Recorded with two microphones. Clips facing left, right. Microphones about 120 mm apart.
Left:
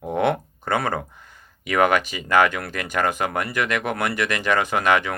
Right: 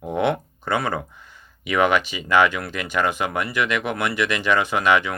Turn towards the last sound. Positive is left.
turn(degrees=40)  # may be behind; listen again after turning